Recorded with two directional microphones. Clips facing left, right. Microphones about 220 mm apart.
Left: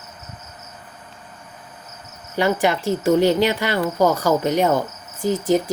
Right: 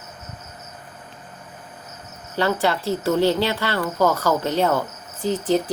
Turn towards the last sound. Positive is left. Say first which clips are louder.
# left 2 dB
turn(degrees=15)  # may be behind; listen again after turning